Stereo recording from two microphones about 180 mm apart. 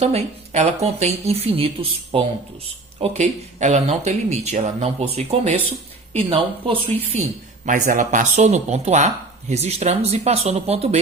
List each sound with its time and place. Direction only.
0.0 s speech: 40° right (ahead or behind)